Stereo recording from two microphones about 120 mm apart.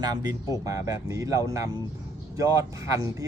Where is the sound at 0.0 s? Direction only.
35° right (ahead or behind).